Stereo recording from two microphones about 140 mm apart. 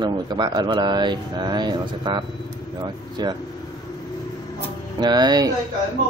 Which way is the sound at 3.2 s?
30° right (ahead or behind).